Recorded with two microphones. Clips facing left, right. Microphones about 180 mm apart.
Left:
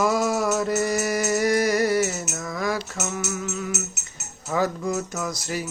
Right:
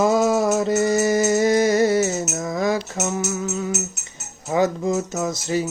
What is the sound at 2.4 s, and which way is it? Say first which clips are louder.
Cutlery: right 4 dB; 20° right (ahead or behind).